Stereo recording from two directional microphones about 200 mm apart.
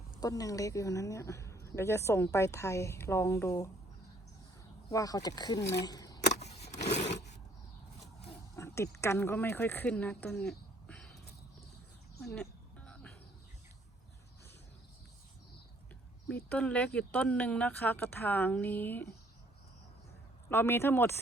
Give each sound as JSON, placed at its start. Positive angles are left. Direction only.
{"t": 0.2, "sound": "a woman's voice", "side_deg": 15}
{"t": 4.9, "sound": "speech", "side_deg": 15}
{"t": 5.8, "sound": "a sound", "side_deg": 20}
{"t": 6.4, "sound": "a sound", "side_deg": 35}
{"t": 8.5, "sound": "speech", "side_deg": 15}
{"t": 12.2, "sound": "music", "side_deg": 5}
{"t": 16.3, "sound": "a woman's voice", "side_deg": 5}
{"t": 20.5, "sound": "a woman's voice", "side_deg": 10}